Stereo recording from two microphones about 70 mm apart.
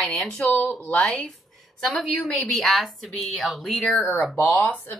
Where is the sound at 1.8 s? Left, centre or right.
Centre.